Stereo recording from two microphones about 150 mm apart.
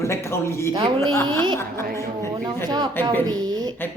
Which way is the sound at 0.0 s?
20° left (ahead or behind).